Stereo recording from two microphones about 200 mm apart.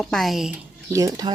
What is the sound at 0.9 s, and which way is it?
Speech, 15° right (ahead or behind).